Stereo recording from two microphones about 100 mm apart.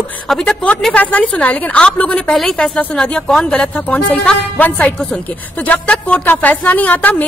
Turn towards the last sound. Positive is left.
turn(degrees=15)  # may be behind; listen again after turning